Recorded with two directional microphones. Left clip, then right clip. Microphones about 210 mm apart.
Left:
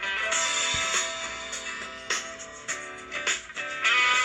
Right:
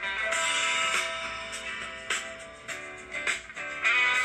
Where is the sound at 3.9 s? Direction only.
25° left (ahead or behind).